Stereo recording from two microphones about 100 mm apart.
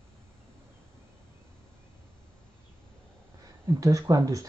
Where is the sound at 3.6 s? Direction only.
35° right (ahead or behind).